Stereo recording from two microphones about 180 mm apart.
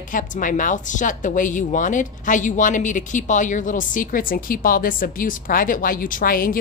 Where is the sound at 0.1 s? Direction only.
50° left (ahead or behind).